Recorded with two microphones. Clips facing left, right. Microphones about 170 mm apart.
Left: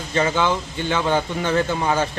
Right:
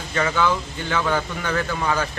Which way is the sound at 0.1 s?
25° left (ahead or behind).